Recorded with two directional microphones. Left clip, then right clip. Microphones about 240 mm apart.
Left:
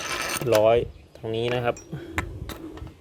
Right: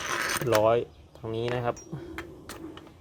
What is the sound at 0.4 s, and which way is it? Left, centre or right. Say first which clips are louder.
Speech: left 5 dB; centre.